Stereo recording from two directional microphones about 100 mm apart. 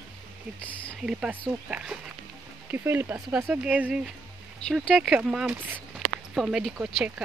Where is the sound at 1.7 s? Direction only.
10° right (ahead or behind).